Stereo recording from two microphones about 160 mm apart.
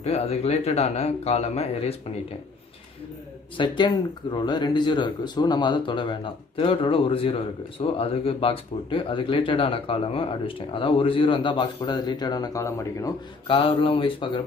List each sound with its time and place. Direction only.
0.0 s speech: 40° left (ahead or behind)
3.5 s speech: 30° left (ahead or behind)